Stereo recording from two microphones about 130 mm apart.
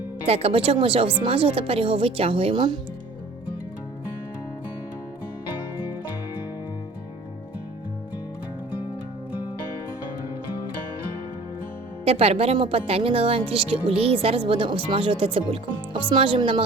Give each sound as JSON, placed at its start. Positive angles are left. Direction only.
{"t": 0.3, "sound": "speech", "side_deg": -50}
{"t": 12.0, "sound": "speech", "side_deg": -50}